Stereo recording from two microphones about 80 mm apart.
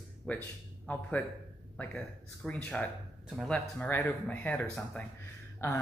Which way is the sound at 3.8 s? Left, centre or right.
Left.